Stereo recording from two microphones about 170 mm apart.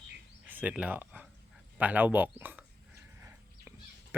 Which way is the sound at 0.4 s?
10° right (ahead or behind).